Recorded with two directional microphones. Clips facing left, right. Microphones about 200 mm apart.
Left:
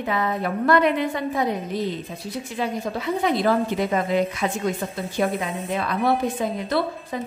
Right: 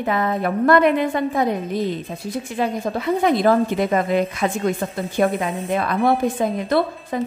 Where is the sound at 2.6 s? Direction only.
50° right (ahead or behind).